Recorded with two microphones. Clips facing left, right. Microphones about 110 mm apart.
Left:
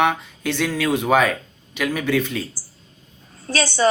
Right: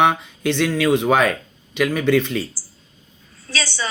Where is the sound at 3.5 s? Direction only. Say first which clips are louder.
Left 8 dB; 50° left (ahead or behind).